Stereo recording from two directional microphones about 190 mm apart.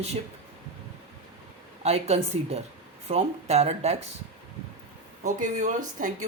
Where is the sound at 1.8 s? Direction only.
35° right (ahead or behind).